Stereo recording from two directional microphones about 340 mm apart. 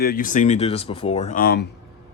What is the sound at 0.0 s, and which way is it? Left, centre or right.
Speech, left.